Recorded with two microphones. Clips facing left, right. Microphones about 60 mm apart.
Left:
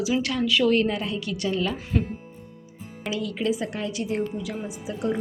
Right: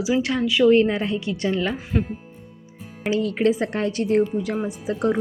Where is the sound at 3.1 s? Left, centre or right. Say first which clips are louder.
Right 6 dB; right.